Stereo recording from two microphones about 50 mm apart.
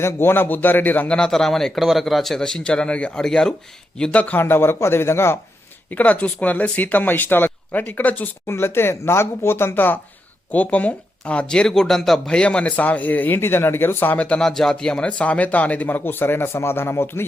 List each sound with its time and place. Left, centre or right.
0.0 s speech: left
1.0 s speech: centre
1.3 s speech: centre
1.8 s speech: centre
2.4 s speech: centre
4.1 s speech: left
4.4 s speech: left
5.9 s speech: left
8.4 s speech: left
10.5 s speech: left; by 12.3 s centre
12.3 s speech: left
13.4 s speech: left
14.3 s speech: centre; by 16.6 s left
16.6 s speech: left